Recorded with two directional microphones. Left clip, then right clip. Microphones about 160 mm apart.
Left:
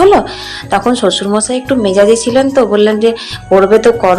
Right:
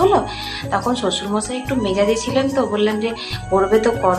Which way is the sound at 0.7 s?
40° left (ahead or behind).